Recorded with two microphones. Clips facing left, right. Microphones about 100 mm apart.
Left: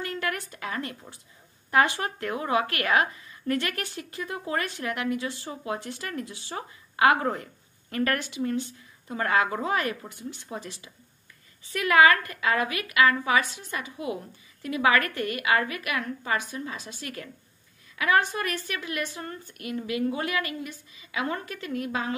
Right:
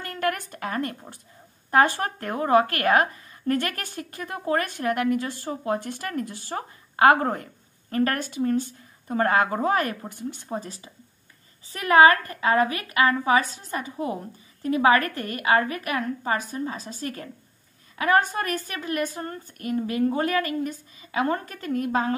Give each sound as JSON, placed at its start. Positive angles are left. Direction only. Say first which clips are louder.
{"t": 0.0, "sound": "a woman's voice", "louder": "right 4 dB", "side_deg": -45}